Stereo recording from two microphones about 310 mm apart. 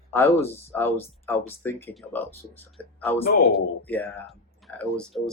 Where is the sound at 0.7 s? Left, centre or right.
Centre.